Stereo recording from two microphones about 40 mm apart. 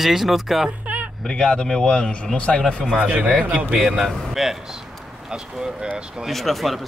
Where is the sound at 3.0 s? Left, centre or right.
Right.